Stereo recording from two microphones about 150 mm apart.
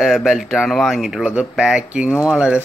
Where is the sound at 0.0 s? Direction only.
Centre (ahead or behind).